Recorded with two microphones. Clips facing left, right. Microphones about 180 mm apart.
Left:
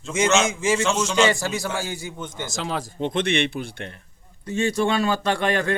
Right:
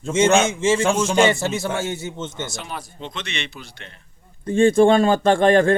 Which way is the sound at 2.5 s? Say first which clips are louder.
Left 5 dB; 90° left.